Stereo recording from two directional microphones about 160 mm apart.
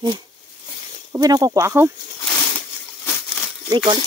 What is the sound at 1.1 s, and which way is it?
Speech, 25° right (ahead or behind).